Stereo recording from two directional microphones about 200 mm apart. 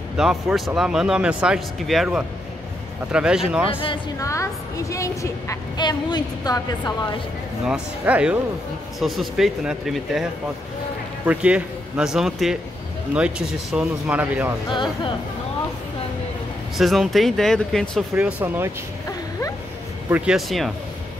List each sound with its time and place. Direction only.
0.2 s speech: centre (ahead or behind)
3.8 s a woman's voice: 20° left (ahead or behind)
7.6 s speech: 5° right (ahead or behind)
14.7 s a woman's voice: 25° left (ahead or behind)
16.7 s speech: centre (ahead or behind)
18.1 s speech: 10° right (ahead or behind)
20.1 s speech: 5° right (ahead or behind)